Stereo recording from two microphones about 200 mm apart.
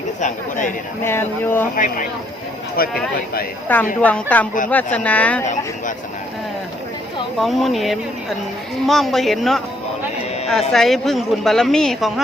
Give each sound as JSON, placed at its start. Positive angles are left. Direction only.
{"t": 0.2, "sound": "speech", "side_deg": 40}
{"t": 1.0, "sound": "speech", "side_deg": 10}
{"t": 1.7, "sound": "speech", "side_deg": 40}
{"t": 3.7, "sound": "speech", "side_deg": 10}
{"t": 7.3, "sound": "a woman's voice", "side_deg": 0}
{"t": 10.7, "sound": "a woman's voice", "side_deg": 0}